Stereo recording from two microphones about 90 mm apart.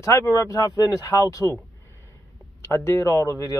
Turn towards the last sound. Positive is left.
turn(degrees=35)  # may be behind; listen again after turning